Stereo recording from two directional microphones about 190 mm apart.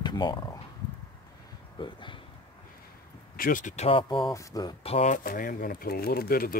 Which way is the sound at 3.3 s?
45° left (ahead or behind).